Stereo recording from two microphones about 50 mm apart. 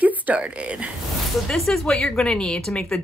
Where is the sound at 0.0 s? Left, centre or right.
Right.